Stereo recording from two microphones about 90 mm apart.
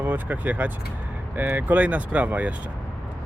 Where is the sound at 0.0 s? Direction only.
15° right (ahead or behind).